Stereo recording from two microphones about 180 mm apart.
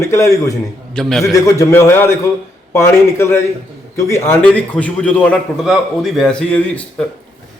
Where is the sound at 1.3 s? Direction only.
15° left (ahead or behind).